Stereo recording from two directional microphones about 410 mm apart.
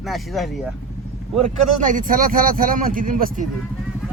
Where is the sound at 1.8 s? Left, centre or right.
Centre.